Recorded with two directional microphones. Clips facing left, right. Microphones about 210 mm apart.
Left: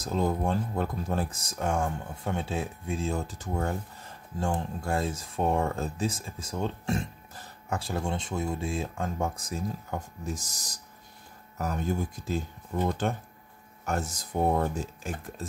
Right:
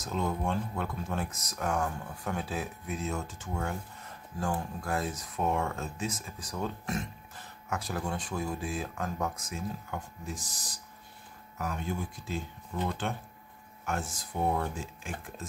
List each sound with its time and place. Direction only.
0.0 s speech: 35° left (ahead or behind)
4.4 s speech: 25° left (ahead or behind)